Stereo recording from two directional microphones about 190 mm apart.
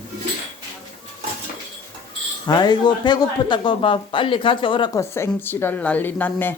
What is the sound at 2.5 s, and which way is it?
Speech, 20° left (ahead or behind).